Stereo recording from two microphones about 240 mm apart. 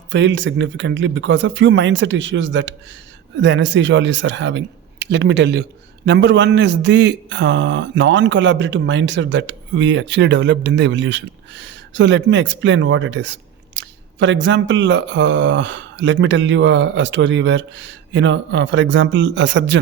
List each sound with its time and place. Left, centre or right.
0.1 s a man's voice: right